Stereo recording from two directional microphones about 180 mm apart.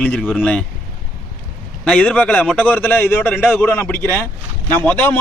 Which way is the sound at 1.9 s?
5° left (ahead or behind).